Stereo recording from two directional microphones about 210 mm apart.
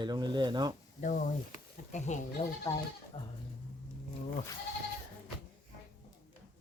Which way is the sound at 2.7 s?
15° left (ahead or behind).